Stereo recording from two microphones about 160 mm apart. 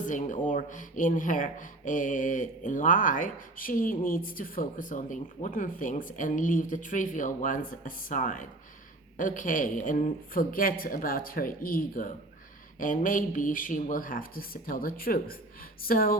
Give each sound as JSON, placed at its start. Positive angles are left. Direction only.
{"t": 0.0, "sound": "speech", "side_deg": 50}